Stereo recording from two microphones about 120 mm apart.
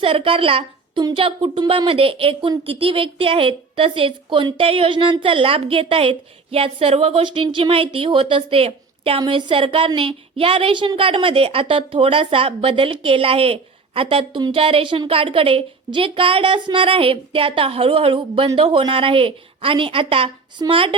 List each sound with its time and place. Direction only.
0.0 s a woman's voice: 50° right (ahead or behind)